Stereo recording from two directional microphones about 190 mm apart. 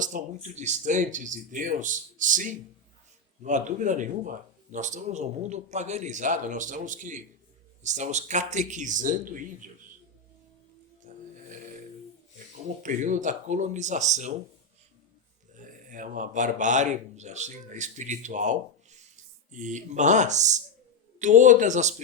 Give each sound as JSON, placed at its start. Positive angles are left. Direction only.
{"t": 0.0, "sound": "speech", "side_deg": -40}
{"t": 11.1, "sound": "music", "side_deg": -45}
{"t": 12.8, "sound": "speech", "side_deg": -40}
{"t": 15.5, "sound": "speech", "side_deg": -45}